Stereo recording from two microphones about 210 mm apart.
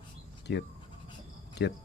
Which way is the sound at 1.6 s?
55° left (ahead or behind).